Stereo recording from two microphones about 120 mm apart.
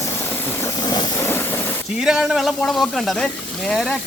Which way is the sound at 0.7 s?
35° left (ahead or behind).